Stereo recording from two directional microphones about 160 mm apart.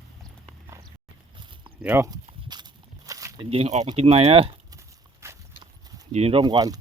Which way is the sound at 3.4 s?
35° right (ahead or behind).